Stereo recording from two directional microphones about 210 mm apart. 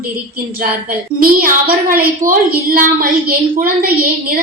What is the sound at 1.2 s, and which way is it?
A woman's voice, 45° right (ahead or behind).